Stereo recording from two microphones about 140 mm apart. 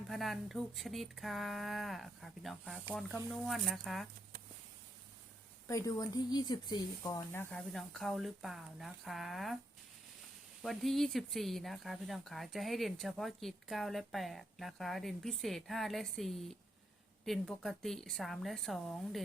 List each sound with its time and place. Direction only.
0.1 s speech: centre (ahead or behind)
5.6 s speech: 20° left (ahead or behind)
7.3 s speech: 5° left (ahead or behind)
10.6 s speech: centre (ahead or behind)